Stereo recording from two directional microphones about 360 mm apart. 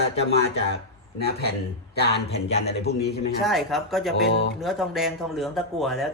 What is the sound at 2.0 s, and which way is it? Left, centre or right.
Speech, left.